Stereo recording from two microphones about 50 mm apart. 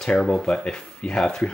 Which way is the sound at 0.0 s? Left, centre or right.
Centre.